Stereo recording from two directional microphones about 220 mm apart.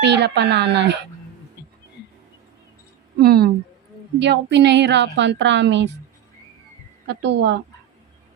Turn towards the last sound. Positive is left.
turn(degrees=-50)  # may be behind; listen again after turning